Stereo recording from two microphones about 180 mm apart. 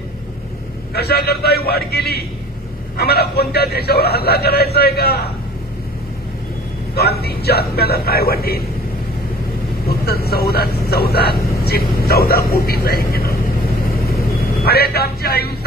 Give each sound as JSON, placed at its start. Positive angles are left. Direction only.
{"t": 0.9, "sound": "a man's voice", "side_deg": 60}
{"t": 7.0, "sound": "a man's voice", "side_deg": 65}
{"t": 9.8, "sound": "a man's voice", "side_deg": 60}
{"t": 11.5, "sound": "vehicle", "side_deg": 60}
{"t": 12.1, "sound": "a man's voice", "side_deg": 60}
{"t": 14.6, "sound": "a man's voice", "side_deg": 60}